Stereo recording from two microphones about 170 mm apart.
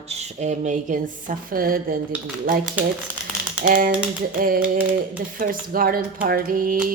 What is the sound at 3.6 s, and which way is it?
Speech, 55° right (ahead or behind).